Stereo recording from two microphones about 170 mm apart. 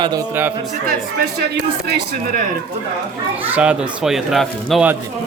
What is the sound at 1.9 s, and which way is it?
Speech, 70° right (ahead or behind).